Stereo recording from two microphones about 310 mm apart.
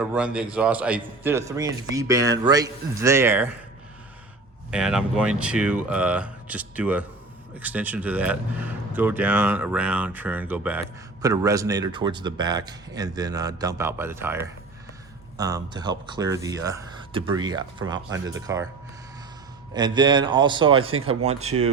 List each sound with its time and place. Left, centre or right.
0.0 s a man's voice: centre
4.7 s a man's voice: centre
19.7 s a man's voice: centre